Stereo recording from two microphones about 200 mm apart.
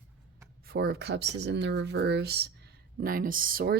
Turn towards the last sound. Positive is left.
turn(degrees=-45)  # may be behind; listen again after turning